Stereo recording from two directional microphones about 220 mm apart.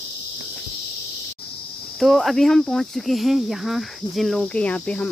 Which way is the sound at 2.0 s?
Centre (ahead or behind).